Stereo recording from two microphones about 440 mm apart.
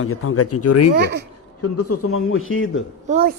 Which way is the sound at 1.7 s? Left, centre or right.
Left.